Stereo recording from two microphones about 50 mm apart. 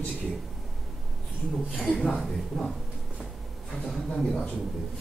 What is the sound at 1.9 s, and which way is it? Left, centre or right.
Speech, centre.